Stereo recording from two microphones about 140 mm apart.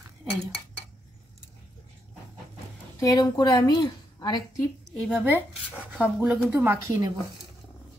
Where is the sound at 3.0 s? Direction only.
25° left (ahead or behind).